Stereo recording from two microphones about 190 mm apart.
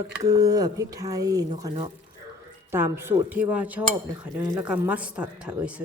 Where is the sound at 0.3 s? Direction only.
20° right (ahead or behind).